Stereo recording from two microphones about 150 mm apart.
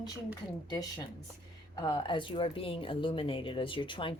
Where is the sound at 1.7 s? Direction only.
30° left (ahead or behind).